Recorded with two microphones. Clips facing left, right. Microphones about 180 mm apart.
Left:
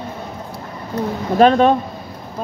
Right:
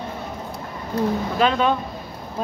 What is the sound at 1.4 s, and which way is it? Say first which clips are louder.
Speech: left 8 dB; 45° left (ahead or behind).